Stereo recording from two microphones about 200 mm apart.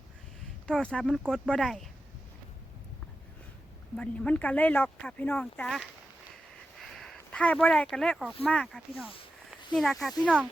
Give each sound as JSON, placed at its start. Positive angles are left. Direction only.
{"t": 0.7, "sound": "speech", "side_deg": 5}
{"t": 3.9, "sound": "speech", "side_deg": 5}
{"t": 6.7, "sound": "a sound", "side_deg": 0}
{"t": 8.4, "sound": "speech", "side_deg": 0}
{"t": 9.0, "sound": "a sound", "side_deg": 25}
{"t": 9.7, "sound": "speech", "side_deg": 0}